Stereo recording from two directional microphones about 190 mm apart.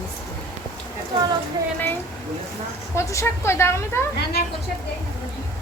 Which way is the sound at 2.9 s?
15° left (ahead or behind).